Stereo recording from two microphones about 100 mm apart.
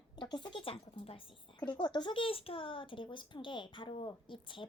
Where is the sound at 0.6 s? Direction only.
75° left (ahead or behind).